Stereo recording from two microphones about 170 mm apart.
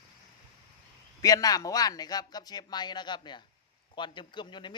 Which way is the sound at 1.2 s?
20° left (ahead or behind).